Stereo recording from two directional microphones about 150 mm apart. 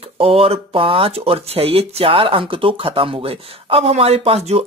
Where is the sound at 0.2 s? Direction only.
40° right (ahead or behind).